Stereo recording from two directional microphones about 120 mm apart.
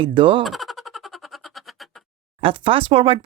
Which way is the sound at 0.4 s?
Centre (ahead or behind).